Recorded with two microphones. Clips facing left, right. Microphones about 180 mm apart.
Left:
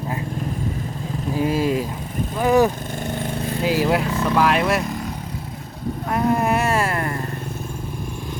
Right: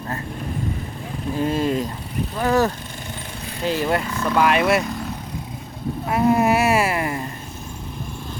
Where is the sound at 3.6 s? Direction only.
5° left (ahead or behind).